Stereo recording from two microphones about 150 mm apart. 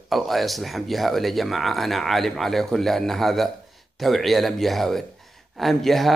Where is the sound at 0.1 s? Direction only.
Centre (ahead or behind).